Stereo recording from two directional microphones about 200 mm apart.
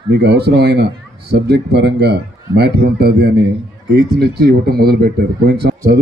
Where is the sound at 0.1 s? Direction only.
55° right (ahead or behind).